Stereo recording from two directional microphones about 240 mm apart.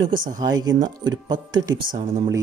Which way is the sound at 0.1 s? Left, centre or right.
Right.